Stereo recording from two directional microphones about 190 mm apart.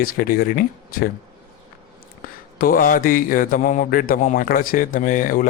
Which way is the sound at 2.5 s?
45° left (ahead or behind).